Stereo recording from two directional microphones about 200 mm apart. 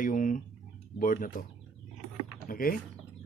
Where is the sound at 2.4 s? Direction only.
45° left (ahead or behind).